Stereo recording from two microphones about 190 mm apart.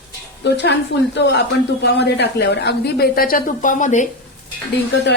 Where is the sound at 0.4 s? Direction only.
65° left (ahead or behind); by 4.1 s 40° left (ahead or behind).